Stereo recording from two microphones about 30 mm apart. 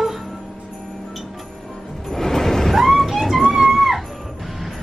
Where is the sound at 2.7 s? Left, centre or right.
Centre.